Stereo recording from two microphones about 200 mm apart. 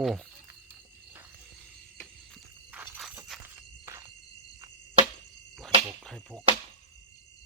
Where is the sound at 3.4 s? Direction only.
15° right (ahead or behind).